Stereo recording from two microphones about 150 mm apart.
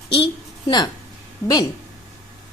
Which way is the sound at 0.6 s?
25° left (ahead or behind).